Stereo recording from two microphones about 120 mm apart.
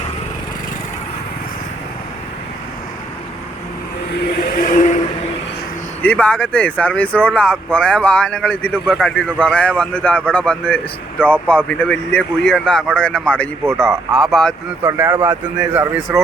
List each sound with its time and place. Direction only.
4.6 s vehicle: 90° left
6.0 s speech: 10° left (ahead or behind)
14.8 s a man's voice: 20° right (ahead or behind)